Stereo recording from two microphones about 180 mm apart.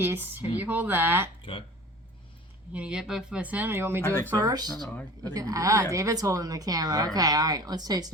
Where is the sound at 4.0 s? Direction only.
10° left (ahead or behind).